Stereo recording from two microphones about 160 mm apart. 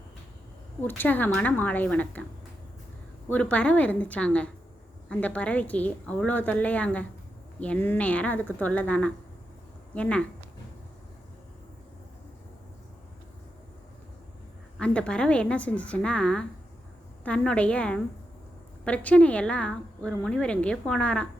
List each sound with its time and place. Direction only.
0.8 s a woman's voice: 10° left (ahead or behind)
3.2 s a woman's voice: 10° left (ahead or behind)
14.8 s a woman's voice: 5° left (ahead or behind)